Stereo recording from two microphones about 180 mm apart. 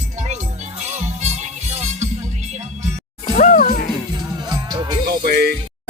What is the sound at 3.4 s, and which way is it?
Music, 45° left (ahead or behind).